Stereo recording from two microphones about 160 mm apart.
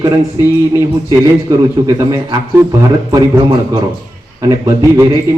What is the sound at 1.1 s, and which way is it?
A man's voice, 20° right (ahead or behind).